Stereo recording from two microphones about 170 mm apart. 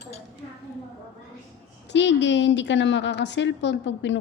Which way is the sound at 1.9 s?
90° left.